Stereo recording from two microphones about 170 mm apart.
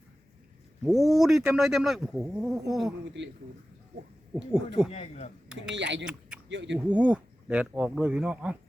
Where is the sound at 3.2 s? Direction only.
90° right.